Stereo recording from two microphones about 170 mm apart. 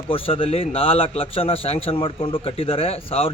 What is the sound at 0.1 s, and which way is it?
A man's voice, 35° left (ahead or behind).